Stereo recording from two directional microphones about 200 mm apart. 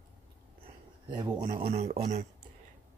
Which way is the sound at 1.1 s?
20° right (ahead or behind).